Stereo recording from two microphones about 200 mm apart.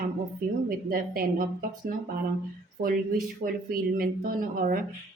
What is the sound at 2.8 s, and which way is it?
Speech, 45° right (ahead or behind).